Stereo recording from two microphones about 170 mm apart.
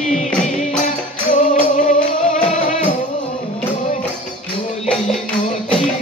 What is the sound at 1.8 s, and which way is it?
Music, 45° left (ahead or behind).